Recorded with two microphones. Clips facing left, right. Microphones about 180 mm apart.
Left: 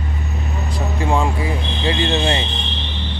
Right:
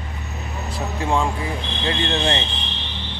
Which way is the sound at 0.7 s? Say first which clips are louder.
Left 2 dB; centre (ahead or behind).